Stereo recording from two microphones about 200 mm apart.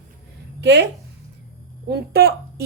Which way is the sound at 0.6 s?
60° right (ahead or behind).